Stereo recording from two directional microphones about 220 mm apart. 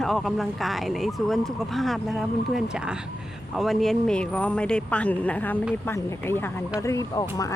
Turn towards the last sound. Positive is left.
turn(degrees=15)  # may be behind; listen again after turning